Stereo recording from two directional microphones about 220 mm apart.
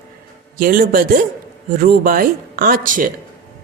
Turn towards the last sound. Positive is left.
turn(degrees=-40)  # may be behind; listen again after turning